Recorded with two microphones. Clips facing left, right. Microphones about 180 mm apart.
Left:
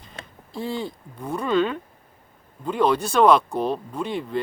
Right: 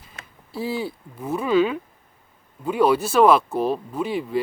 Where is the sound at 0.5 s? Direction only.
5° right (ahead or behind).